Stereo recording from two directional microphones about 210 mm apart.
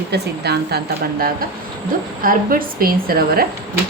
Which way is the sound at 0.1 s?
50° right (ahead or behind).